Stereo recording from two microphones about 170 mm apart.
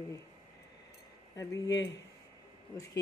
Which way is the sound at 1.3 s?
20° left (ahead or behind).